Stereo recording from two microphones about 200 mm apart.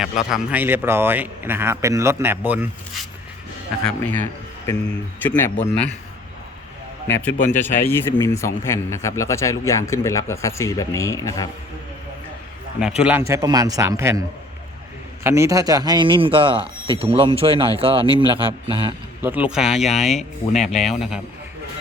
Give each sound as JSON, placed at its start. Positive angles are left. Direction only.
{"t": 0.0, "sound": "speech", "side_deg": 0}
{"t": 3.8, "sound": "speech", "side_deg": 10}
{"t": 7.1, "sound": "speech", "side_deg": 10}
{"t": 13.0, "sound": "speech", "side_deg": -10}
{"t": 15.2, "sound": "speech", "side_deg": -15}
{"t": 19.2, "sound": "speech", "side_deg": -10}
{"t": 20.5, "sound": "speech", "side_deg": 35}